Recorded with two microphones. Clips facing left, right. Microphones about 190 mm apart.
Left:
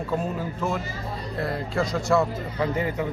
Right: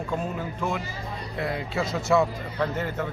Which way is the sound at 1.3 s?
Centre (ahead or behind).